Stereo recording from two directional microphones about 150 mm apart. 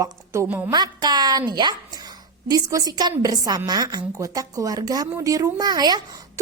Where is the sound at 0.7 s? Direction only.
25° right (ahead or behind).